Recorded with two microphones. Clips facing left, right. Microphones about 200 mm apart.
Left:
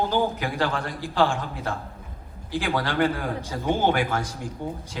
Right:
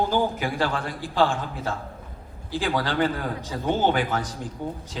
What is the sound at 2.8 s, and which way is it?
A man's voice, 15° left (ahead or behind).